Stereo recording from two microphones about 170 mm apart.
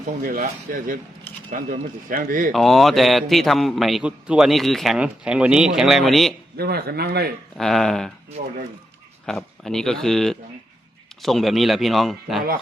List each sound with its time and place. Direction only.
0.2 s speech: 55° right (ahead or behind)
2.5 s a man's voice: centre (ahead or behind)
6.6 s a man's voice: 65° right (ahead or behind)
7.6 s a man's voice: centre (ahead or behind)
9.2 s a man's voice: 5° left (ahead or behind)